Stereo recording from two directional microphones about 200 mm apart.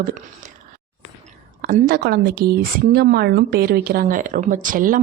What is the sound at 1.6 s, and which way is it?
A woman's voice, 50° right (ahead or behind).